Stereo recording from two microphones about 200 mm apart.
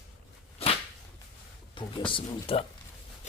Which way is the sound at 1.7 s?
25° left (ahead or behind).